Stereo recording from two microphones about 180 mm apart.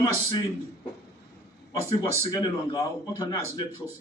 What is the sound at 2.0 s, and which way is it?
Speech, 20° left (ahead or behind).